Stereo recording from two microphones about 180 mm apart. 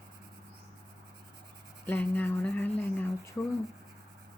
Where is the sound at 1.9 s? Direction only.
10° left (ahead or behind).